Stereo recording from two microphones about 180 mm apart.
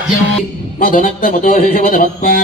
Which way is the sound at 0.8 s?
50° left (ahead or behind).